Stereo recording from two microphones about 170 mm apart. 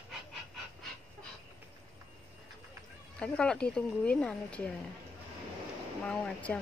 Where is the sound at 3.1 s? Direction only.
5° left (ahead or behind).